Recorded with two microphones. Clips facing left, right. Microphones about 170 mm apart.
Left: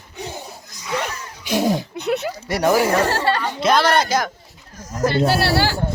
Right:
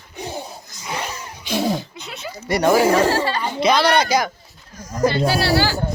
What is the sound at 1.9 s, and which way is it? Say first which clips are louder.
Speech: left 11 dB; 65° left (ahead or behind).